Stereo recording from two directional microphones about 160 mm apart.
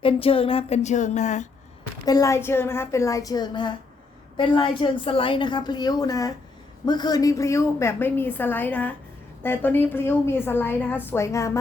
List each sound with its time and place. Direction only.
0.0 s speech: 35° left (ahead or behind)
2.0 s a woman's voice: 20° left (ahead or behind)